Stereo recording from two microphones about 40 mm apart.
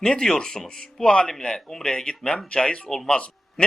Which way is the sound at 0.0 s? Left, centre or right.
Centre.